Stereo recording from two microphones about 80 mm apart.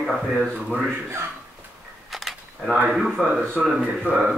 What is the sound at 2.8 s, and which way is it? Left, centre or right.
Speech, centre.